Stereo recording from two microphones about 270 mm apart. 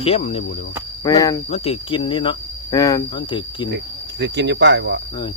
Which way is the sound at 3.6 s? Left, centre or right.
Right.